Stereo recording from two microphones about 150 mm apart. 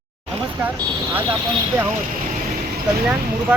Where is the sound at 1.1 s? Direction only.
15° right (ahead or behind).